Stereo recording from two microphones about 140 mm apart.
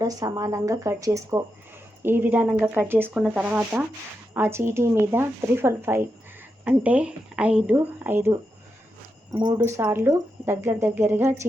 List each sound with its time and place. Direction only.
0.0 s speech: 25° right (ahead or behind)
3.2 s speech: 5° right (ahead or behind)
9.6 s speech: 20° right (ahead or behind)